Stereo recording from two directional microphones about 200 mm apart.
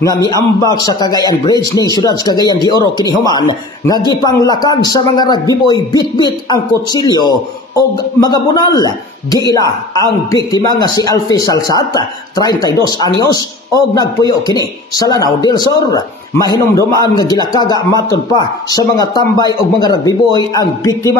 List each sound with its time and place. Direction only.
0.0 s a man's voice: 20° left (ahead or behind)